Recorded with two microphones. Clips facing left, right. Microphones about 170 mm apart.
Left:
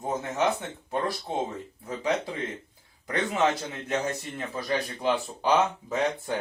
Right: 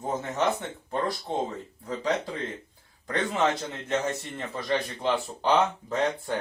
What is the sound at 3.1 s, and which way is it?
A man's voice, 10° left (ahead or behind).